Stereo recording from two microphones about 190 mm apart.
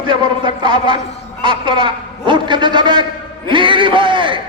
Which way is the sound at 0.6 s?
25° right (ahead or behind).